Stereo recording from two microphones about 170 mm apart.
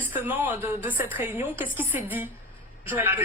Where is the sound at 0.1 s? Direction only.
10° right (ahead or behind).